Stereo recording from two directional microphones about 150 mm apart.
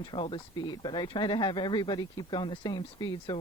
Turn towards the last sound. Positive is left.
turn(degrees=30)  # may be behind; listen again after turning